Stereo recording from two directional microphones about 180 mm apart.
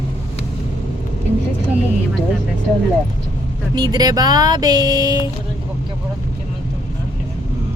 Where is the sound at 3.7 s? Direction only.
20° right (ahead or behind).